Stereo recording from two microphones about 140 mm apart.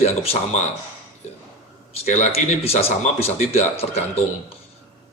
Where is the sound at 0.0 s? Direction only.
45° left (ahead or behind).